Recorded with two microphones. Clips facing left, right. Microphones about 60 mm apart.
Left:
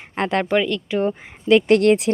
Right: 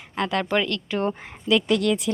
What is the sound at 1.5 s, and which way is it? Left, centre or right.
Speech, left.